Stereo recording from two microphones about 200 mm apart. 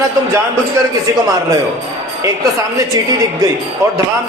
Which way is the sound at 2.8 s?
15° right (ahead or behind).